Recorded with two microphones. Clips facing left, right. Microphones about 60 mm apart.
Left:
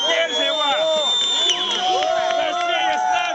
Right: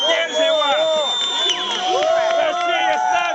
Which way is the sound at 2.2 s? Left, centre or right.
Centre.